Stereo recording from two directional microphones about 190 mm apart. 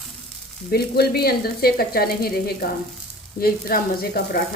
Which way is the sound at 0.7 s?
55° left (ahead or behind).